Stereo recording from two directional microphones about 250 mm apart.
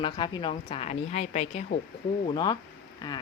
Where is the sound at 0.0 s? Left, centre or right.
Centre.